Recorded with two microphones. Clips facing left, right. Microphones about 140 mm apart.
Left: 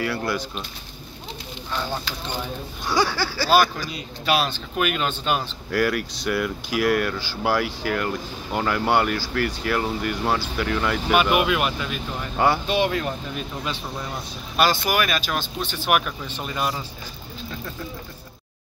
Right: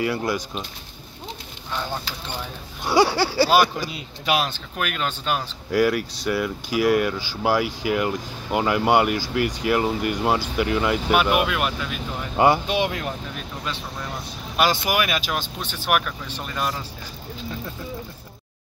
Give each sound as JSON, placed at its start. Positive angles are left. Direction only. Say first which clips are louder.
{"t": 0.0, "sound": "speech", "louder": "right 2 dB", "side_deg": -15}
{"t": 2.9, "sound": "speech", "louder": "right 4 dB", "side_deg": -25}
{"t": 4.7, "sound": "speech", "louder": "left 3 dB", "side_deg": 5}
{"t": 12.4, "sound": "speech", "louder": "right 2 dB", "side_deg": -15}
{"t": 14.6, "sound": "speech", "louder": "even", "side_deg": -15}
{"t": 15.9, "sound": "speech", "louder": "even", "side_deg": 0}